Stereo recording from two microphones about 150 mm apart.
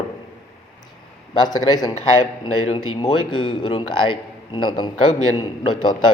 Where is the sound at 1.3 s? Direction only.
25° left (ahead or behind).